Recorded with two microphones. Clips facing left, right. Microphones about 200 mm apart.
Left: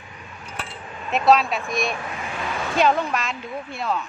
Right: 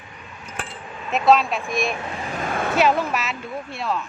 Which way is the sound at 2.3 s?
50° right (ahead or behind).